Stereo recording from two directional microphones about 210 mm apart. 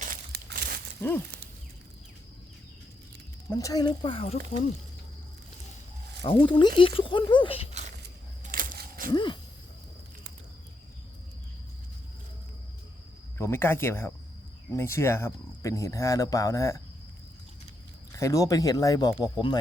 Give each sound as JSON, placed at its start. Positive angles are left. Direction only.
{"t": 0.0, "sound": "crushing", "side_deg": -45}
{"t": 3.5, "sound": "speech", "side_deg": 15}
{"t": 6.2, "sound": "speech", "side_deg": 25}
{"t": 8.0, "sound": "a sound", "side_deg": -40}
{"t": 9.1, "sound": "speech", "side_deg": 20}
{"t": 13.4, "sound": "speech", "side_deg": 10}
{"t": 18.1, "sound": "speech", "side_deg": 15}